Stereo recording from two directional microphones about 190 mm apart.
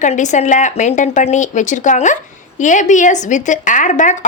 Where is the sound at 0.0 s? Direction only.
40° left (ahead or behind).